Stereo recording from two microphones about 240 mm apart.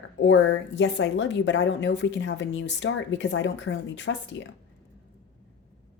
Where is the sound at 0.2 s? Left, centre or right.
Left.